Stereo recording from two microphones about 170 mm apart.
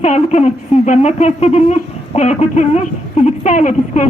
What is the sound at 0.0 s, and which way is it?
A woman's voice, 40° left (ahead or behind).